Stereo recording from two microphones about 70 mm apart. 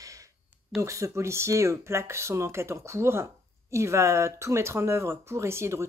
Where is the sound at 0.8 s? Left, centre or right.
Right.